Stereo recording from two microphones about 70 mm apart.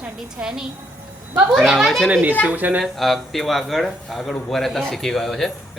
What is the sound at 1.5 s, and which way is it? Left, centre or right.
Speech, centre.